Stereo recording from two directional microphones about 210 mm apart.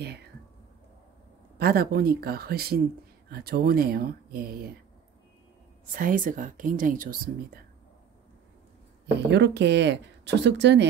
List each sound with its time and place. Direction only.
1.6 s speech: 45° right (ahead or behind)
5.9 s speech: 40° right (ahead or behind)
9.1 s speech: 55° right (ahead or behind)